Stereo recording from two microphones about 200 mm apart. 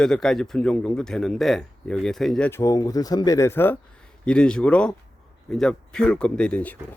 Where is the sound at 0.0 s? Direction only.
5° left (ahead or behind).